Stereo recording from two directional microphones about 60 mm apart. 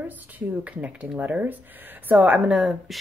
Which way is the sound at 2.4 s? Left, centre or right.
Centre.